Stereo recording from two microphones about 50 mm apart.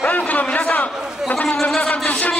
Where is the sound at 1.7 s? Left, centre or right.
Centre.